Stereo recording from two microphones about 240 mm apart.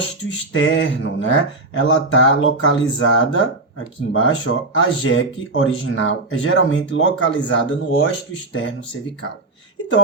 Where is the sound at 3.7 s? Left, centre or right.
Left.